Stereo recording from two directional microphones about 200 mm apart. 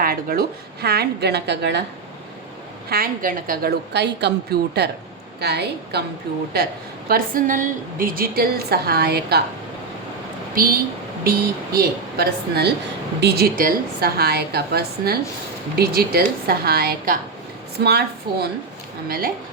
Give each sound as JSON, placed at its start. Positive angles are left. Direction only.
{"t": 0.0, "sound": "a woman's voice", "side_deg": -45}
{"t": 2.9, "sound": "a woman's voice", "side_deg": -45}
{"t": 7.1, "sound": "a woman's voice", "side_deg": -40}
{"t": 10.5, "sound": "a woman's voice", "side_deg": -45}